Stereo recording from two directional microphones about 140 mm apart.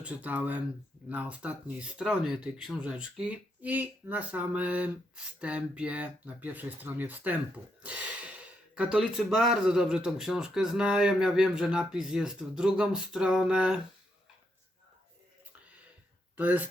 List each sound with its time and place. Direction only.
0.0 s speech: 10° right (ahead or behind)
16.4 s speech: 10° right (ahead or behind)